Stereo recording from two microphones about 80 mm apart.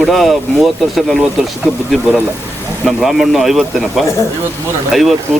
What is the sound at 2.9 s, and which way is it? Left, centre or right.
Speech, centre.